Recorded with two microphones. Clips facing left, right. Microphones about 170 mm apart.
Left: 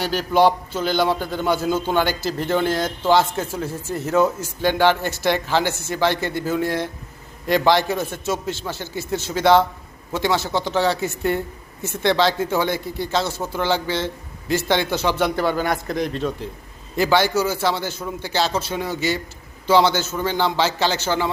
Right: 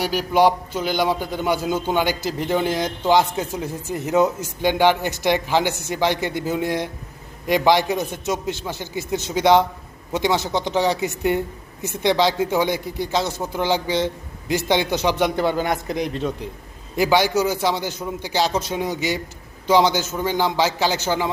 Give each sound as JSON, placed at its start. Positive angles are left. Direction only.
{"t": 0.0, "sound": "a man's voice", "side_deg": -10}